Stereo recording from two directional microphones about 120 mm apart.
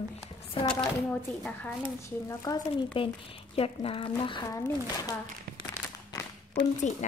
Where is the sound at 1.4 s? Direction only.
20° left (ahead or behind).